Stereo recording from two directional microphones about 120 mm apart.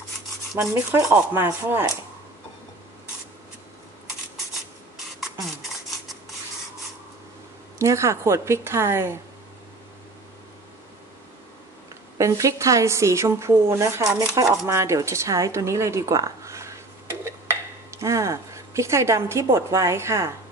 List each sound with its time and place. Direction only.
0.6 s a woman's voice: 20° right (ahead or behind)
7.8 s a woman's voice: 25° right (ahead or behind)
12.2 s a woman's voice: 25° right (ahead or behind)
17.2 s a sound: 25° right (ahead or behind)
19.5 s a woman's voice: 25° right (ahead or behind)